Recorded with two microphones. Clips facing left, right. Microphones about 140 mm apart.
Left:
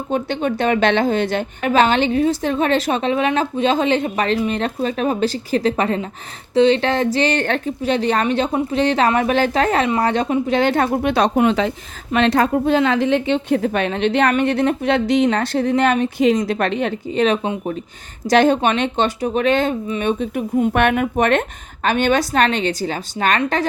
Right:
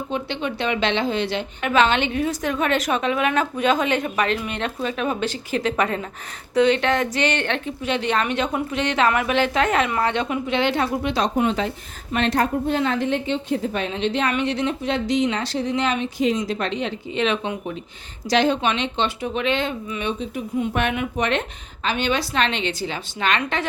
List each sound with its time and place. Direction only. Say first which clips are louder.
0.1 s a woman's voice: left 8 dB; 45° left (ahead or behind)
17.1 s a woman's voice: left 5 dB; 40° left (ahead or behind)